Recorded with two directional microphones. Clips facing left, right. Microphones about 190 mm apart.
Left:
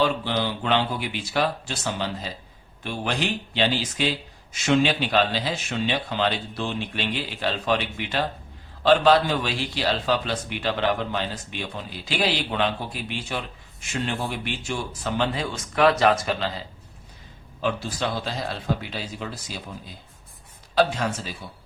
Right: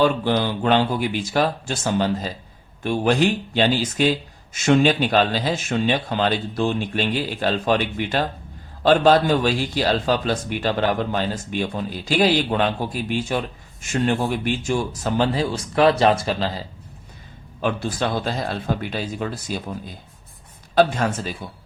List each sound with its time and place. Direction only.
0.0 s a man's voice: 45° right (ahead or behind)
17.6 s a man's voice: 55° right (ahead or behind)
20.7 s a man's voice: 50° right (ahead or behind)